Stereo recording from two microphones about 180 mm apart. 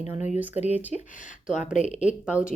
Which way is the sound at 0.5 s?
35° left (ahead or behind).